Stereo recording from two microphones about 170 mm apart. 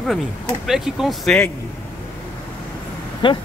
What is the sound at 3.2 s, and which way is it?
Speech, 30° left (ahead or behind).